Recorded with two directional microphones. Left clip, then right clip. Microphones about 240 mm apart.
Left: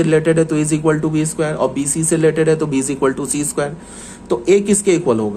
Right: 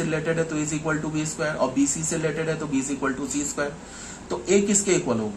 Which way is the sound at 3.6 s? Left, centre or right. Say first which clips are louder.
Left 6 dB; left.